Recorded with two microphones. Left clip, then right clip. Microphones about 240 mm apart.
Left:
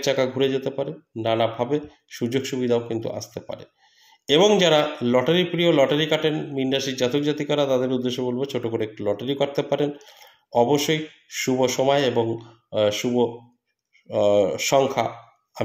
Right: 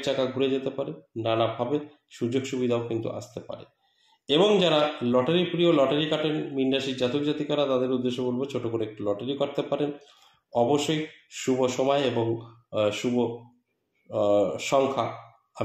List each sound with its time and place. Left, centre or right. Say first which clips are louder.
0.0 s speech: left 4 dB; left